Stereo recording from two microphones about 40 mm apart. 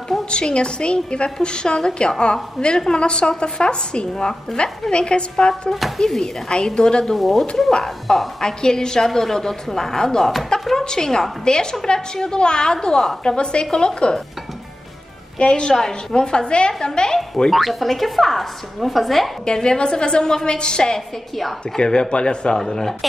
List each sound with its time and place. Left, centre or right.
0.2 s a woman's voice: left
2.6 s a woman's voice: centre
2.9 s a woman's voice: left
5.5 s a woman's voice: centre
6.5 s a woman's voice: left
7.2 s a woman's voice: centre
7.7 s a woman's voice: centre
15.3 s a woman's voice: left
17.5 s a woman's voice: centre
19.4 s a woman's voice: centre
22.6 s a woman's voice: centre